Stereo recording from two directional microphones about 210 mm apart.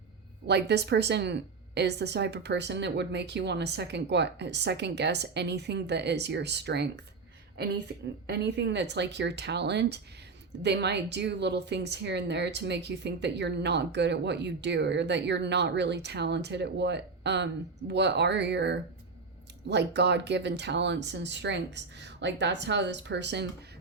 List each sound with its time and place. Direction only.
0.4 s a woman's voice: 50° right (ahead or behind)
8.3 s a woman's voice: 55° right (ahead or behind)